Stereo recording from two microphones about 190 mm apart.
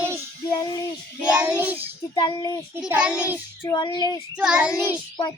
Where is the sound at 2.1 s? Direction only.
20° left (ahead or behind).